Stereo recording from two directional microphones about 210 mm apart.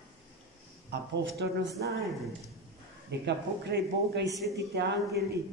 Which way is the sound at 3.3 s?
55° right (ahead or behind).